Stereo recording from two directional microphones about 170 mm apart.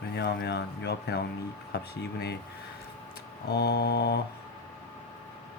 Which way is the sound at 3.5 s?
75° left (ahead or behind).